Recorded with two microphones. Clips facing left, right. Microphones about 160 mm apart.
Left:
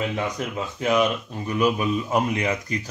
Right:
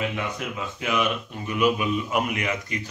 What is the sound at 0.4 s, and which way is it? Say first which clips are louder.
Speech: left 4 dB; 35° left (ahead or behind).